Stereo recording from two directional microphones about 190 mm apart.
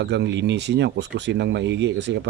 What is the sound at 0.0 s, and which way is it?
Speech, 65° right (ahead or behind).